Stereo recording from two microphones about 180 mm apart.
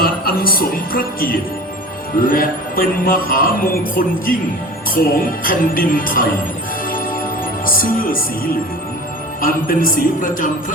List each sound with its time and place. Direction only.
0.0 s music: 55° left (ahead or behind)
7.6 s speech: 50° left (ahead or behind)
9.4 s music: 50° left (ahead or behind)